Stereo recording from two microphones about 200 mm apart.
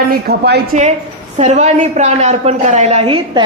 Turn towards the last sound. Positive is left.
turn(degrees=-25)  # may be behind; listen again after turning